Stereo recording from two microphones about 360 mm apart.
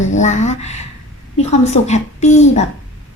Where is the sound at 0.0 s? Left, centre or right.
Centre.